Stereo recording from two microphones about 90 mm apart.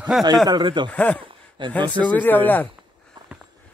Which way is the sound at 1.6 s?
65° right (ahead or behind).